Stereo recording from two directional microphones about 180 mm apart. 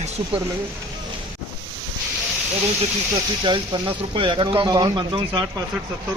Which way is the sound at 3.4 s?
25° right (ahead or behind).